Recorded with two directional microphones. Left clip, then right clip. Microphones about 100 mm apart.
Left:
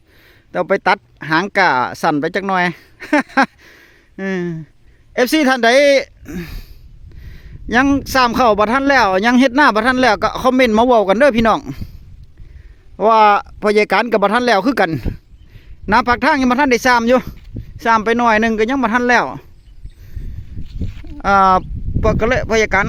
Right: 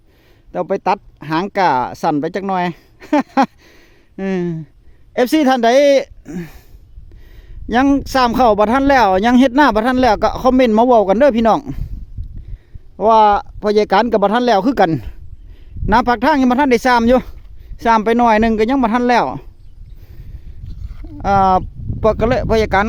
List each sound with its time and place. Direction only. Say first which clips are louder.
0.2 s speech: left 2 dB; 15° right (ahead or behind)
3.6 s a sound: left 3 dB; 30° right (ahead or behind)
5.1 s speech: even; 30° right (ahead or behind)
6.2 s speech: even; 25° right (ahead or behind)
13.0 s speech: even; 5° right (ahead or behind); by 19.5 s 60° right (ahead or behind)
20.7 s a sound: left 4 dB; 40° left (ahead or behind)
21.2 s speech: left 1 dB; 25° right (ahead or behind)
22.0 s speech: right 1 dB; 60° right (ahead or behind)